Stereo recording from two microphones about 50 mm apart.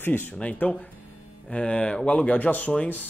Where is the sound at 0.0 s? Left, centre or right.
Left.